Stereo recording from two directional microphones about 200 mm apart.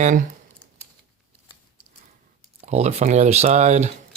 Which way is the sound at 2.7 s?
35° right (ahead or behind).